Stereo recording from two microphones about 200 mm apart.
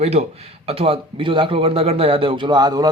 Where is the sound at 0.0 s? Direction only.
30° right (ahead or behind).